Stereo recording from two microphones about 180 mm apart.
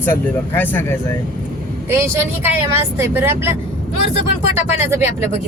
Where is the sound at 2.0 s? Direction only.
10° right (ahead or behind).